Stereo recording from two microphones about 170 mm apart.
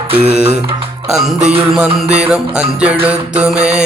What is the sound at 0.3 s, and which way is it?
Music, 5° right (ahead or behind).